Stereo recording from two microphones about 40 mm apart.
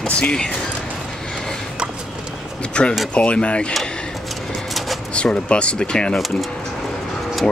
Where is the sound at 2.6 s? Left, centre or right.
Left.